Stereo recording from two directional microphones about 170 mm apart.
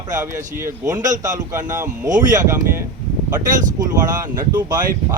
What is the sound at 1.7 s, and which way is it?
Speech, 15° right (ahead or behind).